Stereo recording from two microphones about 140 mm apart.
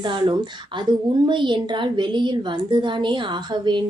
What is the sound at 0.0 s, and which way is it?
A woman's voice, 35° right (ahead or behind).